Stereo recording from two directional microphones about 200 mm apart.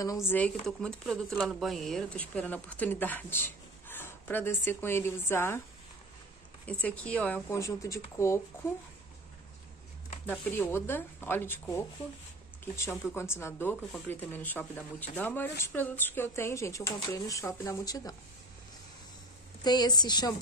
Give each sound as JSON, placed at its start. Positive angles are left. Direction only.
{"t": 0.0, "sound": "speech", "side_deg": 15}
{"t": 6.6, "sound": "speech", "side_deg": 5}
{"t": 10.2, "sound": "speech", "side_deg": 10}
{"t": 13.1, "sound": "speech", "side_deg": 10}
{"t": 19.6, "sound": "a woman's voice", "side_deg": 20}